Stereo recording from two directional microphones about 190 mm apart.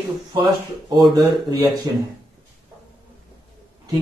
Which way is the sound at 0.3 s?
20° right (ahead or behind).